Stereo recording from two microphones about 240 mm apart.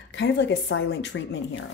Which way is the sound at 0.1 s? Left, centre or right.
Left.